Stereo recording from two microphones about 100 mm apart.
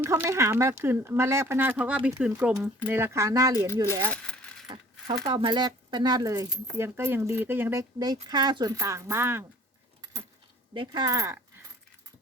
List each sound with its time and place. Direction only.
0.0 s speech: 30° right (ahead or behind); by 2.9 s 10° right (ahead or behind)
2.9 s speech: 25° right (ahead or behind)
4.1 s a sound: 10° left (ahead or behind)
5.2 s speech: 55° right (ahead or behind); by 7.9 s 25° right (ahead or behind)
7.9 s speech: 40° right (ahead or behind); by 9.5 s 25° right (ahead or behind)
10.0 s keys jangling: 35° right (ahead or behind)
10.8 s speech: 45° right (ahead or behind)